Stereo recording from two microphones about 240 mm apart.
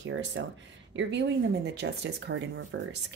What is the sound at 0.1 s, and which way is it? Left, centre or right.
Speech, right.